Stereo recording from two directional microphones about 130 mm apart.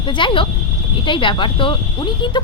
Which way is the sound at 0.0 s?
40° left (ahead or behind).